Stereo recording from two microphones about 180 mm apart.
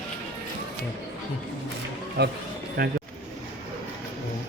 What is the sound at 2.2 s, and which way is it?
Speech, 70° right (ahead or behind).